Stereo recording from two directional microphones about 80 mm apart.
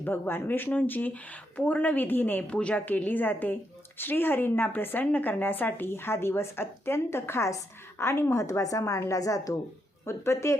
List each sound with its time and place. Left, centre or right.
0.0 s a woman's voice: left